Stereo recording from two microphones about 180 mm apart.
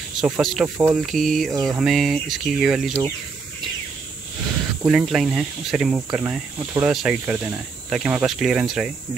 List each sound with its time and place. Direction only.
0.2 s speech: centre (ahead or behind)
1.5 s a sound: 20° right (ahead or behind)
1.8 s speech: centre (ahead or behind)
4.8 s speech: centre (ahead or behind)
6.9 s speech: 5° right (ahead or behind)